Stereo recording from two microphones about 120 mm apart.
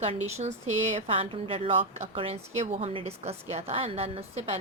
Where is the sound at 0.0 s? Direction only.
65° right (ahead or behind).